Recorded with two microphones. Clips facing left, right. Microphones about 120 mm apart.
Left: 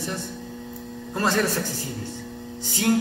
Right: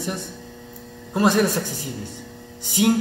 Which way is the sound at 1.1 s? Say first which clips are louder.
Right 5 dB; 15° right (ahead or behind).